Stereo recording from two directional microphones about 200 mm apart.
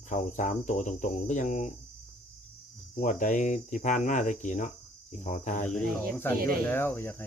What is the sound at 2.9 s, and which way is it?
Speech, 40° left (ahead or behind).